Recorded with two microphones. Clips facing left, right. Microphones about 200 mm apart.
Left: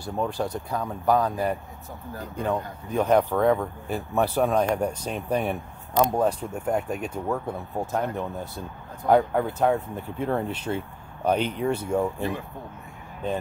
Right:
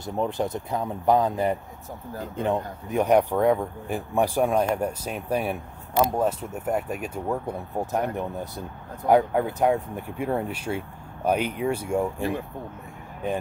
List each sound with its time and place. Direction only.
0.0 s speech: 20° right (ahead or behind)